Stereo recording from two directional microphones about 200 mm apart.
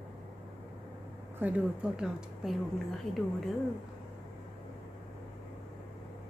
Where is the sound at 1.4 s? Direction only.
5° right (ahead or behind).